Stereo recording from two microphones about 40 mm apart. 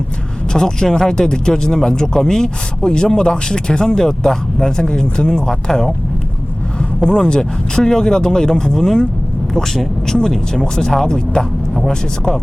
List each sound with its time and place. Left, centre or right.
0.5 s speech: centre
5.5 s speech: centre
7.0 s speech: centre